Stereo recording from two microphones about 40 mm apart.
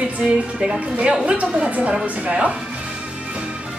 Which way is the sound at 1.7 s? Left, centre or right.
Right.